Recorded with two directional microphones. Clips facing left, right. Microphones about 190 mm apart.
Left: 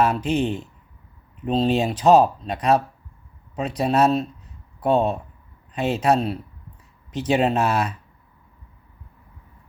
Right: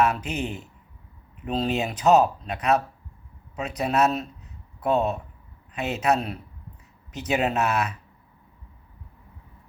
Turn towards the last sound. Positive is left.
turn(degrees=30)  # may be behind; listen again after turning